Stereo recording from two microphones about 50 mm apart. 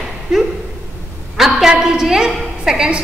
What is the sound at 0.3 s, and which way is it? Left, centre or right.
A woman's voice, centre.